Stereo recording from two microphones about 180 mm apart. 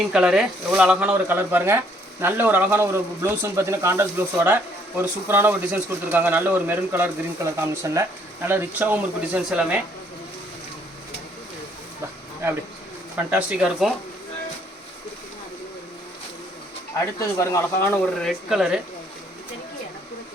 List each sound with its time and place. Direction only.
0.1 s speech: 5° right (ahead or behind)
13.1 s speech: 10° right (ahead or behind)
17.2 s speech: 15° left (ahead or behind)
18.0 s speech: centre (ahead or behind)